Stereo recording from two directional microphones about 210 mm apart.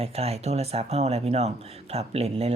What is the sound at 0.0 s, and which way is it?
Speech, 30° right (ahead or behind).